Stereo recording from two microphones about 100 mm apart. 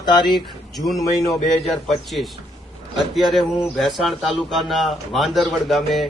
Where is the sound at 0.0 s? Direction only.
50° left (ahead or behind).